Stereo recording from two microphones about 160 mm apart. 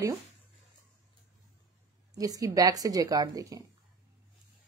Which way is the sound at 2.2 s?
20° right (ahead or behind).